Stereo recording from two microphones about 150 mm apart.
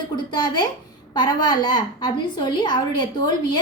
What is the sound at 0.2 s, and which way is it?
A woman's voice, 30° left (ahead or behind).